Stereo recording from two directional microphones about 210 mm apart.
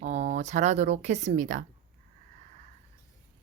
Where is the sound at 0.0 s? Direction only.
35° right (ahead or behind).